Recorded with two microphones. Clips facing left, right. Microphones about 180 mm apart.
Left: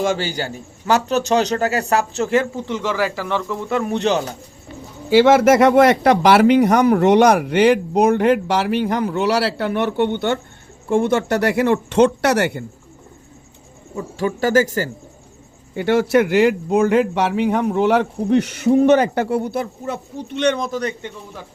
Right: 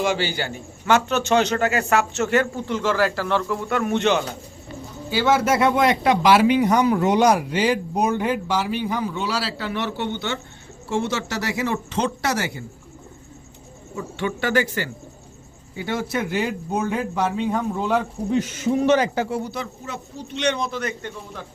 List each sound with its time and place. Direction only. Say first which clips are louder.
0.0 s a man's voice: left 2 dB; 45° left (ahead or behind)
2.6 s speech: even; 15° left (ahead or behind)
3.7 s a man's voice: left 2 dB; 30° left (ahead or behind)
5.0 s speech: left 8 dB; 90° left
5.5 s speech: left 7 dB; 80° left
13.9 s a man's voice: left 4 dB; 35° left (ahead or behind)
15.7 s speech: left 10 dB; 70° left (ahead or behind)
18.9 s speech: left 4 dB; 55° left (ahead or behind); by 20.9 s 40° left (ahead or behind)